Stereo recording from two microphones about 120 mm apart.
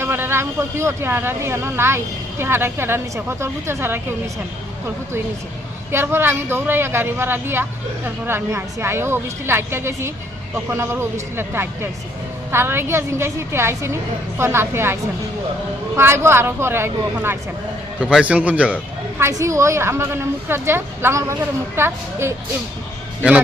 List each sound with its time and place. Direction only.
0.0 s a woman's voice: 20° right (ahead or behind)
5.9 s a woman's voice: 20° right (ahead or behind)
16.0 s a woman's voice: 20° right (ahead or behind)
19.2 s a woman's voice: 25° right (ahead or behind)